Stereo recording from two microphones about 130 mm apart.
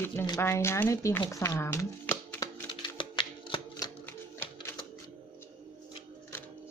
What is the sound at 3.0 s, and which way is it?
Shuffling cards, 40° left (ahead or behind).